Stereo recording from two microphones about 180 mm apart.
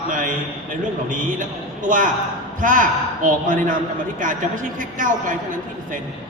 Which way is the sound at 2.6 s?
50° right (ahead or behind).